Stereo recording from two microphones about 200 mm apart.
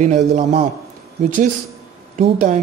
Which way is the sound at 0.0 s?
35° right (ahead or behind).